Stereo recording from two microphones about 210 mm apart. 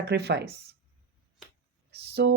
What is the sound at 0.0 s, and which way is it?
Speech, 50° right (ahead or behind).